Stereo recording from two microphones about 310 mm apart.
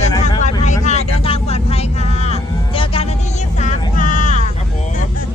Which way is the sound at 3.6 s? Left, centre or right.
Left.